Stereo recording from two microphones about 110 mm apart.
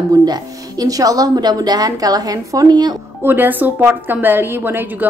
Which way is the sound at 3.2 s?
20° right (ahead or behind).